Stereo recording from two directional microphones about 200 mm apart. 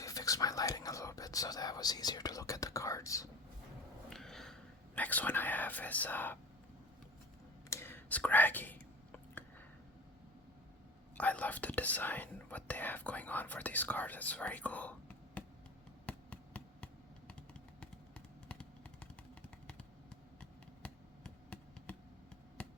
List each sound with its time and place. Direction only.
0.0 s whispering: 15° left (ahead or behind)
4.1 s a sound: centre (ahead or behind)
4.9 s speech: 10° left (ahead or behind)
7.7 s whispering: 10° left (ahead or behind)
11.2 s speech: 10° left (ahead or behind)
16.0 s computer keyboard: 5° left (ahead or behind)
17.7 s a sound: 5° left (ahead or behind)
20.4 s computer keyboard: 5° left (ahead or behind)
22.6 s a sound: 5° left (ahead or behind)